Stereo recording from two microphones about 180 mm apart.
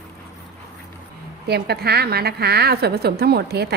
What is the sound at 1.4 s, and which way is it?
A woman's voice, 60° right (ahead or behind).